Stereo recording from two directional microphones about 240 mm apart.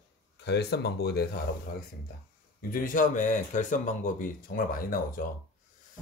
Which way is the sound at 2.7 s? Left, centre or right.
Left.